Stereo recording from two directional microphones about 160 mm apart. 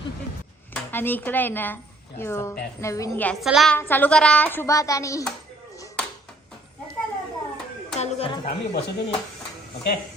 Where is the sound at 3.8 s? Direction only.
10° left (ahead or behind).